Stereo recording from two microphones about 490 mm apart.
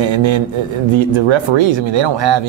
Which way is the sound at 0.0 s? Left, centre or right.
Right.